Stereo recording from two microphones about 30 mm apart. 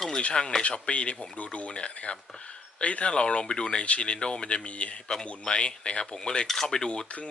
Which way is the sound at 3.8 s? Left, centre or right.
Left.